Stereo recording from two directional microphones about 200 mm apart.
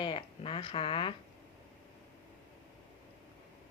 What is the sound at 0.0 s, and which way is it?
Speech, 25° left (ahead or behind).